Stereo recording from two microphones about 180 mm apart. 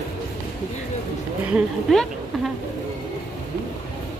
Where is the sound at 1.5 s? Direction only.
Centre (ahead or behind).